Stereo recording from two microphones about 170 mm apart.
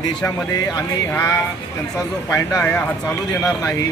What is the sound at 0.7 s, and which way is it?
Speech, 20° left (ahead or behind).